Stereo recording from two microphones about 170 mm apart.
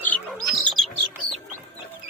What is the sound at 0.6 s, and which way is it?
Bird, centre (ahead or behind).